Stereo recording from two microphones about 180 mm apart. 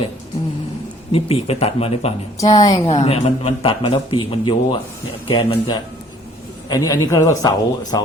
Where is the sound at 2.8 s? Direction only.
35° left (ahead or behind).